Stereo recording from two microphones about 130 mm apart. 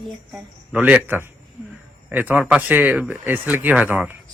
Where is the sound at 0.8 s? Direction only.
10° right (ahead or behind).